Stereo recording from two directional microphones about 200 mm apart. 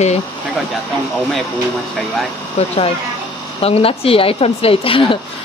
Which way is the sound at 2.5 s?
30° left (ahead or behind).